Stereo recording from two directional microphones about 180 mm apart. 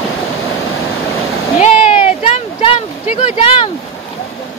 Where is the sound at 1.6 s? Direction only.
35° left (ahead or behind).